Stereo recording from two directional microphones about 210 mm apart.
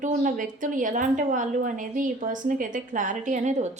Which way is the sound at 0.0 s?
40° right (ahead or behind).